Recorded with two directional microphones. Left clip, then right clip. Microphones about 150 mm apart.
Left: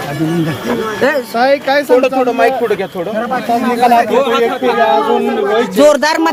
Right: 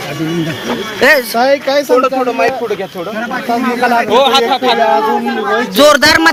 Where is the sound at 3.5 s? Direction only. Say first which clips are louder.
Left 2 dB; 30° right (ahead or behind).